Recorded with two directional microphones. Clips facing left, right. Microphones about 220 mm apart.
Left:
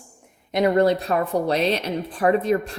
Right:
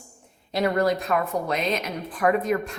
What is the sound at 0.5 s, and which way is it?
Speech, 25° left (ahead or behind).